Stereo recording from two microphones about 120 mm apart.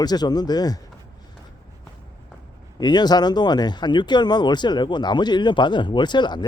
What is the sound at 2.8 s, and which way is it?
Speech, 35° left (ahead or behind).